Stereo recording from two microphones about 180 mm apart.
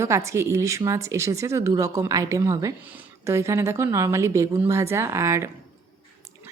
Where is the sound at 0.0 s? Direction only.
15° right (ahead or behind).